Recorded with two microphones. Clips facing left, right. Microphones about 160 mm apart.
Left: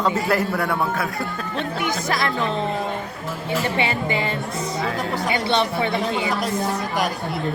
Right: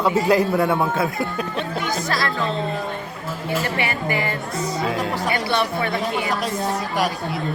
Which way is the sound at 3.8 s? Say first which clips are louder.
Left 1 dB; 20° left (ahead or behind).